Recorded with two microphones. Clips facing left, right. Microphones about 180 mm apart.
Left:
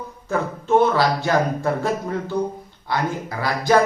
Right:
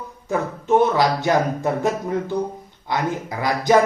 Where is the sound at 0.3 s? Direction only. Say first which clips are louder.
Right 1 dB; 20° right (ahead or behind).